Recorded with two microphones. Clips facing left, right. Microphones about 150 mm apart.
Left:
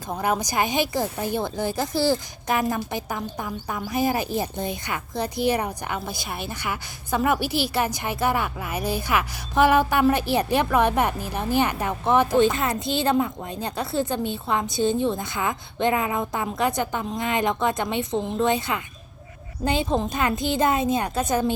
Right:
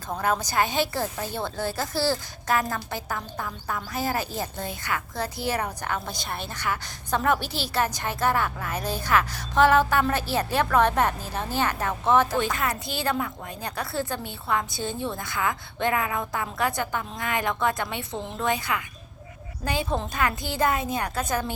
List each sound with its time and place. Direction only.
0.1 s a woman's voice: 15° left (ahead or behind)